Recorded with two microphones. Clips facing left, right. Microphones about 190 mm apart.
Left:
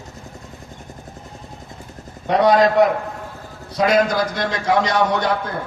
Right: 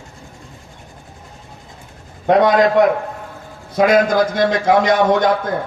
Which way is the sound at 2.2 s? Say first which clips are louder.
Right 2 dB; 50° right (ahead or behind).